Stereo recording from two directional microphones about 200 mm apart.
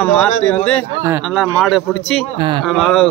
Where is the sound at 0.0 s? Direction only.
5° left (ahead or behind).